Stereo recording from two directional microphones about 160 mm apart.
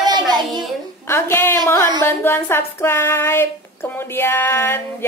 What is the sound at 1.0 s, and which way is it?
Speech, 15° left (ahead or behind).